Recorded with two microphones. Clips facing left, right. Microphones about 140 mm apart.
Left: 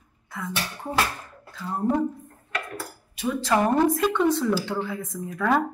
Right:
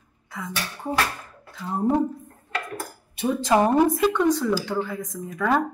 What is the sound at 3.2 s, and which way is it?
Speech, 25° right (ahead or behind).